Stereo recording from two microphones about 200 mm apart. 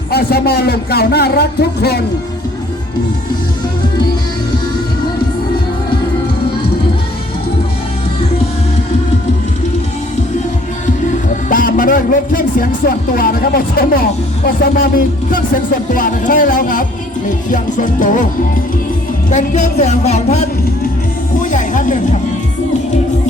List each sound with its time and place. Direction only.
0.1 s a man's voice: 50° left (ahead or behind)
11.4 s a man's voice: 40° left (ahead or behind)
17.5 s music: 40° left (ahead or behind)
19.3 s music: 35° left (ahead or behind)
21.5 s music: 40° left (ahead or behind)